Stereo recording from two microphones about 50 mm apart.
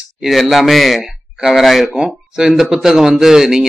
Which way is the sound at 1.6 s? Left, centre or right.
Centre.